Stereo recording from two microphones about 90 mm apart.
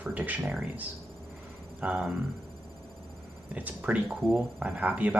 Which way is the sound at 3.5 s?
15° right (ahead or behind).